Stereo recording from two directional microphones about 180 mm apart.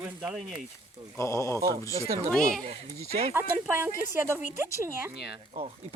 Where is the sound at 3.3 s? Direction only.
10° right (ahead or behind).